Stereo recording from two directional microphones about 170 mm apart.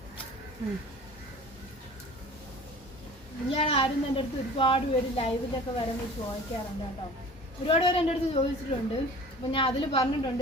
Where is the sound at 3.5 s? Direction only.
35° left (ahead or behind).